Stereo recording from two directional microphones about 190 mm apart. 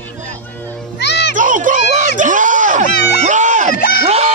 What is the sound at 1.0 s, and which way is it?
Music, 60° left (ahead or behind).